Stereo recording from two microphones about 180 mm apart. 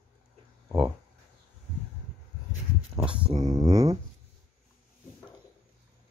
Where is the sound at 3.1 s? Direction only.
30° right (ahead or behind).